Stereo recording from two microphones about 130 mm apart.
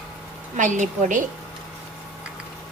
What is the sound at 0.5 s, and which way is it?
Speech, 70° right (ahead or behind).